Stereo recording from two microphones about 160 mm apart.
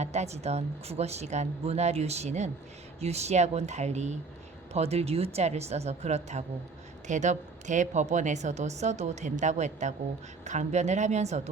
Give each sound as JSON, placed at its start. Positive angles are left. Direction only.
{"t": 0.0, "sound": "a woman's voice", "side_deg": -45}